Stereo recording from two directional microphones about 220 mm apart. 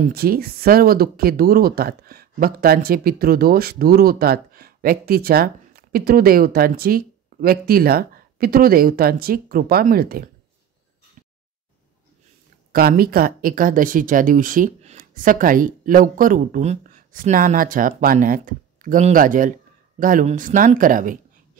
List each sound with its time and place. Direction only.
0.0 s speech: 45° right (ahead or behind)
12.7 s speech: 45° right (ahead or behind)